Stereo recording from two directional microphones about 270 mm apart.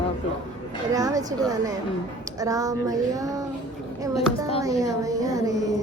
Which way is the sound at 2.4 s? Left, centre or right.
Centre.